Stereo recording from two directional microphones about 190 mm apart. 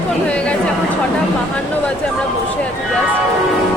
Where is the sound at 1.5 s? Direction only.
5° left (ahead or behind).